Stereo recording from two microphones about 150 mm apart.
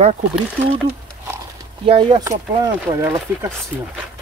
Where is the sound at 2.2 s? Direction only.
25° right (ahead or behind).